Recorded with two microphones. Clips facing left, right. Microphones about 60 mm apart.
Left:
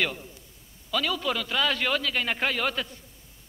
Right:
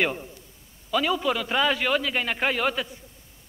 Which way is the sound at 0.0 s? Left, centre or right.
Right.